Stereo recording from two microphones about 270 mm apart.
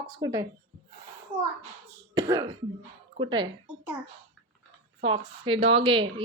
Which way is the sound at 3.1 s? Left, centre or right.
Centre.